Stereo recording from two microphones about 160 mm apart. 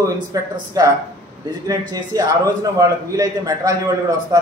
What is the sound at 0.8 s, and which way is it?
A man's voice, 20° right (ahead or behind).